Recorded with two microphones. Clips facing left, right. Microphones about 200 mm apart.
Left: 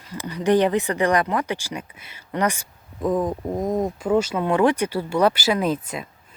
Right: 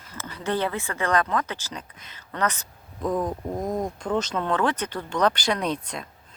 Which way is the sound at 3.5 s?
20° left (ahead or behind).